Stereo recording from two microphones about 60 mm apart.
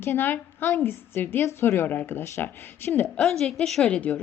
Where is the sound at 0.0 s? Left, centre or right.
Left.